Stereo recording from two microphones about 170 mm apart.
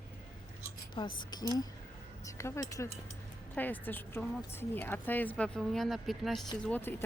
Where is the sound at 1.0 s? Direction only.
30° left (ahead or behind); by 6.4 s centre (ahead or behind).